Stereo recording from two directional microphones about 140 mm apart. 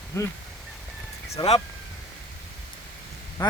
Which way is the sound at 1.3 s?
50° left (ahead or behind).